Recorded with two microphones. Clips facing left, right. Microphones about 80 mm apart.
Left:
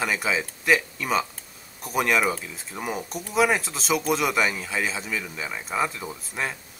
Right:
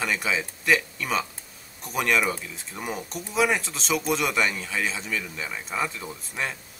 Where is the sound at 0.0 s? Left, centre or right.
Centre.